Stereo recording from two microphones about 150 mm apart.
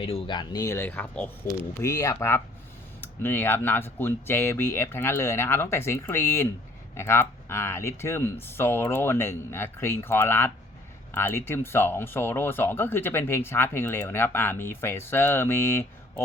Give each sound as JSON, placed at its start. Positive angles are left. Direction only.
{"t": 0.0, "sound": "speech", "side_deg": 30}
{"t": 0.8, "sound": "speech", "side_deg": 10}
{"t": 1.8, "sound": "speech", "side_deg": 20}